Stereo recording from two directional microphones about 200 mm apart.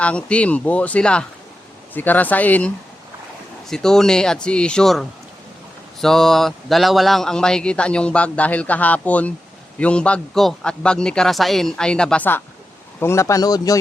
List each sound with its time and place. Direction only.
0.0 s speech: 5° left (ahead or behind)